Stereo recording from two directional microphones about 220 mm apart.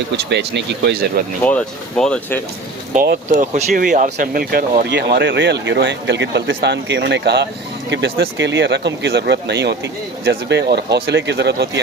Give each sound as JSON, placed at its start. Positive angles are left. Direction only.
{"t": 0.3, "sound": "speech", "side_deg": -50}
{"t": 1.5, "sound": "speech", "side_deg": 5}
{"t": 2.9, "sound": "speech", "side_deg": -40}